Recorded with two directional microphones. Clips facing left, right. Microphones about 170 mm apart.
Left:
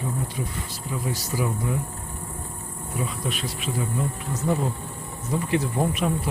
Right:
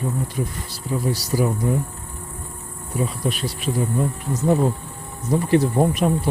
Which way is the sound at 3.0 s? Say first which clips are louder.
Right 5 dB; 35° right (ahead or behind).